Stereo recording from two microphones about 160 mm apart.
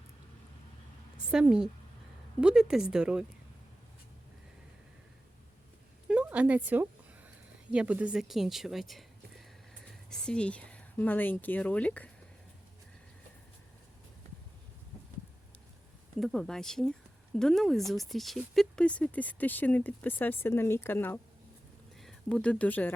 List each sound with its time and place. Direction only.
1.3 s speech: 5° right (ahead or behind)
6.1 s a sound: 10° right (ahead or behind)
7.7 s speech: 5° right (ahead or behind); by 12.1 s 10° left (ahead or behind)
16.1 s speech: centre (ahead or behind)